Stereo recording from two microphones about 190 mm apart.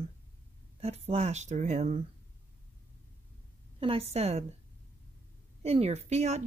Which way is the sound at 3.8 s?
30° right (ahead or behind).